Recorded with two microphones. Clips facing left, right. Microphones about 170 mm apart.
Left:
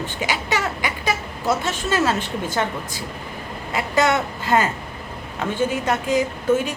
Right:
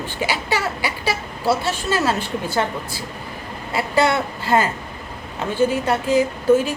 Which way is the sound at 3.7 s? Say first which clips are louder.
Right 1 dB; 35° right (ahead or behind).